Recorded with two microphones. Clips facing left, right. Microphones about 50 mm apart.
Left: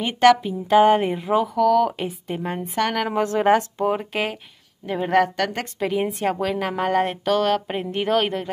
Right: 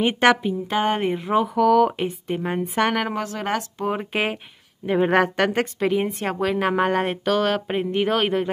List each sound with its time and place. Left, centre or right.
0.0 s a woman's voice: centre
0.5 s a woman's voice: centre
3.2 s speech: centre
4.1 s a woman's voice: centre
5.8 s speech: centre